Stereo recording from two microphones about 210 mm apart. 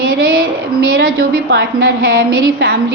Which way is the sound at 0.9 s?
45° right (ahead or behind).